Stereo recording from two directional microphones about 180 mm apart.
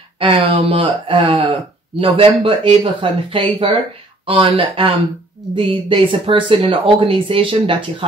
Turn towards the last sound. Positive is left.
turn(degrees=-30)  # may be behind; listen again after turning